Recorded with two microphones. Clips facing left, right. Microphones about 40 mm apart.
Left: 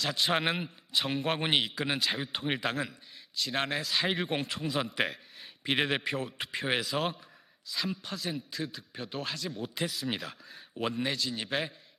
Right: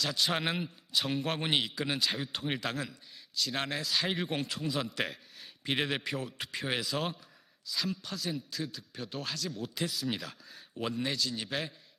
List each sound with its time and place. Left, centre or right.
0.0 s a man's voice: centre